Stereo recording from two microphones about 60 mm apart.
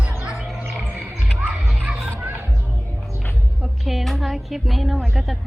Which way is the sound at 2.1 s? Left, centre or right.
Right.